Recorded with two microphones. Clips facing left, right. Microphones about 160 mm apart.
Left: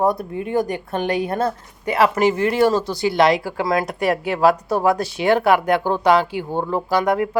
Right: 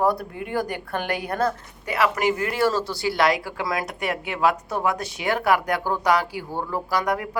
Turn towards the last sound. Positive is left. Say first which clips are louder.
# left 6 dB
turn(degrees=25)  # may be behind; listen again after turning